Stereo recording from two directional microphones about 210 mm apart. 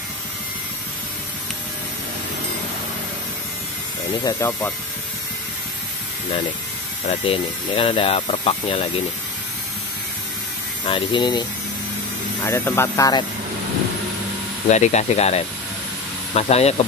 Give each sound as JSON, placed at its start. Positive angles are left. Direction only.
{"t": 4.2, "sound": "speech", "side_deg": 15}
{"t": 7.1, "sound": "speech", "side_deg": 25}
{"t": 10.9, "sound": "speech", "side_deg": 25}
{"t": 12.4, "sound": "speech", "side_deg": 10}
{"t": 14.7, "sound": "speech", "side_deg": 30}